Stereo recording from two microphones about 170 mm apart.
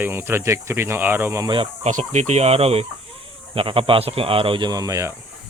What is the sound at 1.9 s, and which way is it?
Speech, 45° right (ahead or behind).